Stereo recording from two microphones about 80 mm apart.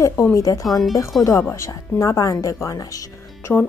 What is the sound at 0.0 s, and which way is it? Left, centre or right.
Speech, left.